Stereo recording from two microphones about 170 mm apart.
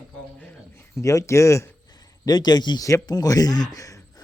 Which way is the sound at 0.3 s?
15° left (ahead or behind).